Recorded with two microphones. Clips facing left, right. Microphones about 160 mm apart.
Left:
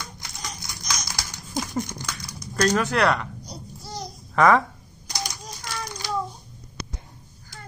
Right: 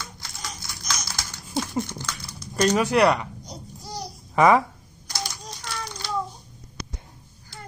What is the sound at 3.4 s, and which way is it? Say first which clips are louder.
Babbling: even; 20° right (ahead or behind).